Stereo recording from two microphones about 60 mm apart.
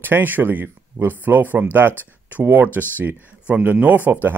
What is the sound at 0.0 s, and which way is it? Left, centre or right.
Speech, right.